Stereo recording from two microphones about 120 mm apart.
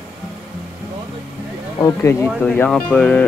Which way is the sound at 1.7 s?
30° left (ahead or behind).